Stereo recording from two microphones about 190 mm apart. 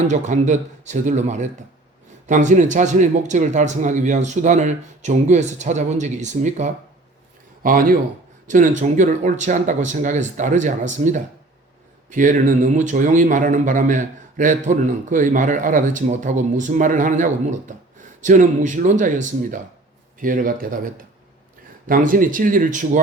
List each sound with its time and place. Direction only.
0.1 s a man's voice: 40° right (ahead or behind)
21.8 s a man's voice: 45° right (ahead or behind)